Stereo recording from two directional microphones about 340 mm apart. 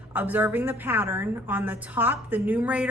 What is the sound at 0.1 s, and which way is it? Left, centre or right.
A woman's voice, centre.